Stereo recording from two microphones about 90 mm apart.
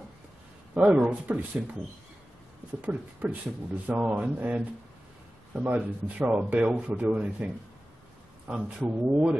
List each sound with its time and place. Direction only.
0.7 s speech: 15° right (ahead or behind)
2.8 s speech: 20° right (ahead or behind)
5.7 s speech: 20° right (ahead or behind)